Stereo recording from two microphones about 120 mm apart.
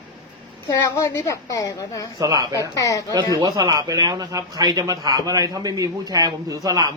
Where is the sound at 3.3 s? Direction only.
30° right (ahead or behind).